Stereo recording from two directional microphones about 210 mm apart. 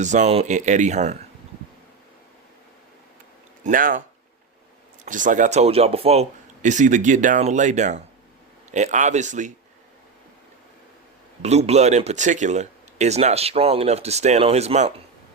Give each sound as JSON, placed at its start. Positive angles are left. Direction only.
{"t": 0.0, "sound": "speech", "side_deg": -35}
{"t": 3.6, "sound": "speech", "side_deg": -40}
{"t": 5.0, "sound": "speech", "side_deg": -40}
{"t": 11.4, "sound": "speech", "side_deg": -30}